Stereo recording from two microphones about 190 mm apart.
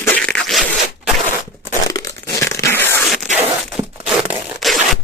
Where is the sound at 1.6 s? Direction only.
15° left (ahead or behind).